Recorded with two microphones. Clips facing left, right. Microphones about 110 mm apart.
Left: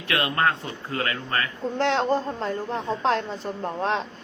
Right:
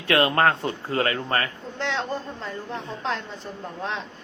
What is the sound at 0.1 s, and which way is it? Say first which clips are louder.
Speech: right 4 dB; 35° right (ahead or behind).